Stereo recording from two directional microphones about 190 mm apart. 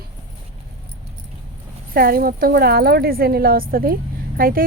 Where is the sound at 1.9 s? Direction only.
50° right (ahead or behind).